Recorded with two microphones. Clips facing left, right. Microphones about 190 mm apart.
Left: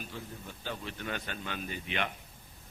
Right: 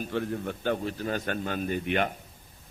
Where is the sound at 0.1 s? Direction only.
75° right (ahead or behind); by 0.9 s 55° right (ahead or behind).